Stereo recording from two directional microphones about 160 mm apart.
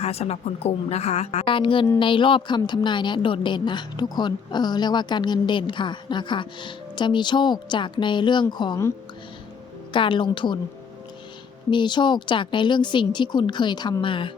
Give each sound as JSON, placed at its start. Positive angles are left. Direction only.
{"t": 0.0, "sound": "a woman's voice", "side_deg": 40}
{"t": 9.9, "sound": "a woman's voice", "side_deg": 30}
{"t": 11.7, "sound": "a woman's voice", "side_deg": 30}